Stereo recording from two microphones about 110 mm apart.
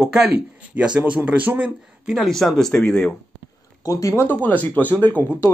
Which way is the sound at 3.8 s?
30° left (ahead or behind).